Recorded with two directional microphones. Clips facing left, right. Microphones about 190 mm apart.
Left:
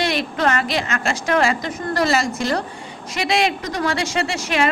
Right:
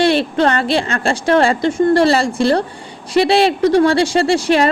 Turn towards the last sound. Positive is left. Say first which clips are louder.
# right 8 dB
turn(degrees=-30)  # may be behind; listen again after turning